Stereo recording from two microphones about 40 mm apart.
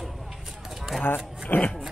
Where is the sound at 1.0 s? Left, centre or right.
Left.